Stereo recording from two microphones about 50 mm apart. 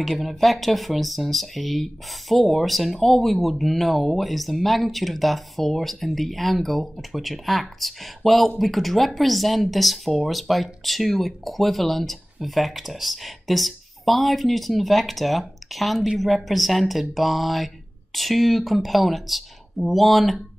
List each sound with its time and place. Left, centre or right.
0.2 s speech: centre